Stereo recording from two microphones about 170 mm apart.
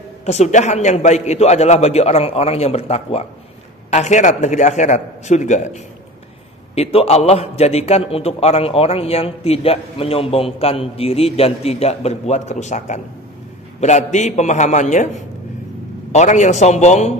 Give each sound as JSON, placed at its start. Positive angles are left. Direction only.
{"t": 0.2, "sound": "a man's voice", "side_deg": 40}
{"t": 16.1, "sound": "a man's voice", "side_deg": 45}